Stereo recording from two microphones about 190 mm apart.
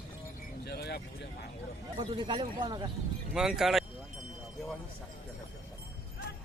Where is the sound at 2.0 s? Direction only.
25° right (ahead or behind).